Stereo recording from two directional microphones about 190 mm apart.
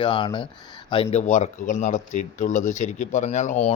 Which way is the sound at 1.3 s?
40° left (ahead or behind).